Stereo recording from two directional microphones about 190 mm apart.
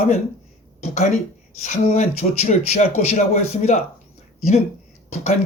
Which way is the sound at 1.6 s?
35° left (ahead or behind).